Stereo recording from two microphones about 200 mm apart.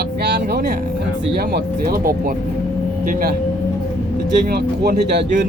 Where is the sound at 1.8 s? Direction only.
50° right (ahead or behind).